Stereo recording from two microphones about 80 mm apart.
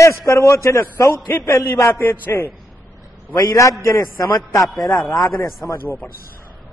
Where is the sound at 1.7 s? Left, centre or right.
Left.